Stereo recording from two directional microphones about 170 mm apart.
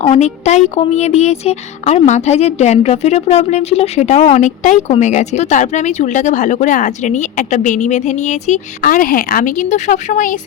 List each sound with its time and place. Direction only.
0.0 s speech: 40° left (ahead or behind)